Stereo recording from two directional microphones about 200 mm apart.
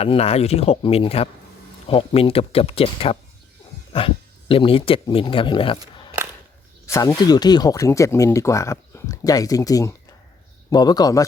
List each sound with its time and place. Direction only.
0.0 s speech: 30° left (ahead or behind)
6.8 s speech: 15° left (ahead or behind)